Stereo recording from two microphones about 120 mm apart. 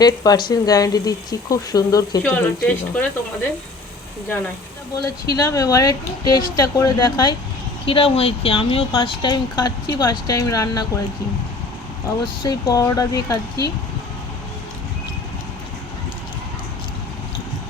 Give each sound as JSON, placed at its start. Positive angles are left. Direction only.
{"t": 0.0, "sound": "speech", "side_deg": 35}
{"t": 2.2, "sound": "speech", "side_deg": 10}
{"t": 4.9, "sound": "speech", "side_deg": 35}
{"t": 7.9, "sound": "speech", "side_deg": 50}
{"t": 12.2, "sound": "speech", "side_deg": 35}